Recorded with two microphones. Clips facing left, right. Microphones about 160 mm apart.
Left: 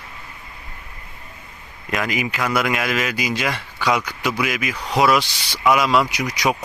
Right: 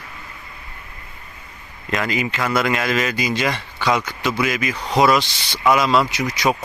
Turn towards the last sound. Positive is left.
turn(degrees=10)  # may be behind; listen again after turning